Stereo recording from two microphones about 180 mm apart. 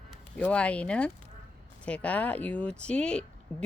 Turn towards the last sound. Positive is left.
turn(degrees=5)  # may be behind; listen again after turning